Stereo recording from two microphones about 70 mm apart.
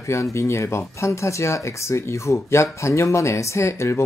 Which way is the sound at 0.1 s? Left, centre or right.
Left.